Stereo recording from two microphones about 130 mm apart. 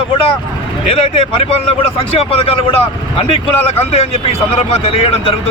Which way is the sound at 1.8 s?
45° left (ahead or behind).